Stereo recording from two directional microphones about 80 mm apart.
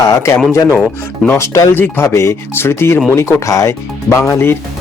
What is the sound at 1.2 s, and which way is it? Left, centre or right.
Speech, left.